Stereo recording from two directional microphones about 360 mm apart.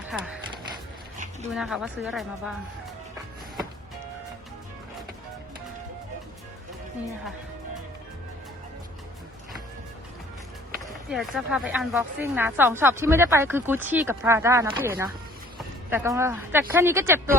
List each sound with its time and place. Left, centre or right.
0.1 s speech: centre
0.5 s mechanisms: centre
1.5 s a woman's voice: centre
11.1 s a woman's voice: centre